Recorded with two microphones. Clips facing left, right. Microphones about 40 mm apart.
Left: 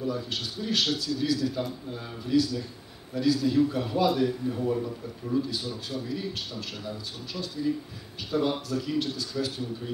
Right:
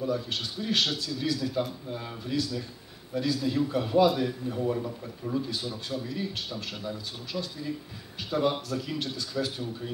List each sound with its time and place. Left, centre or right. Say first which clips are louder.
0.0 s a man's voice: right 1 dB; centre